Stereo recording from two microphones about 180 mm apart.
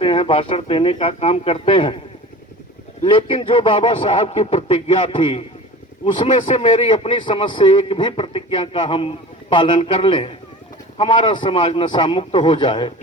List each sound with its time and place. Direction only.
0.0 s a man's voice: 30° left (ahead or behind)
3.0 s a man's voice: 30° left (ahead or behind)